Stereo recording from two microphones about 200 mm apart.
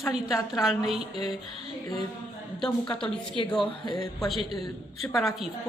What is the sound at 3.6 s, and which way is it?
Speech, 20° left (ahead or behind).